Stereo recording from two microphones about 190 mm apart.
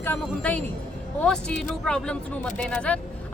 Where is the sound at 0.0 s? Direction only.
10° left (ahead or behind).